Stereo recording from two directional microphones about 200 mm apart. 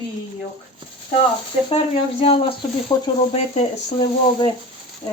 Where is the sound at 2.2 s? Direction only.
30° left (ahead or behind).